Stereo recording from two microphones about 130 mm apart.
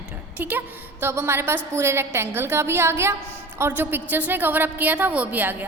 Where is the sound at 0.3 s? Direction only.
15° right (ahead or behind).